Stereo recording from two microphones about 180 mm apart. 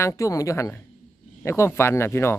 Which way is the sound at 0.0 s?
15° left (ahead or behind).